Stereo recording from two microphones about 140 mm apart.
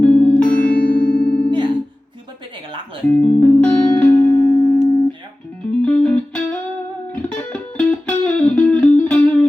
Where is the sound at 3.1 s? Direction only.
10° left (ahead or behind).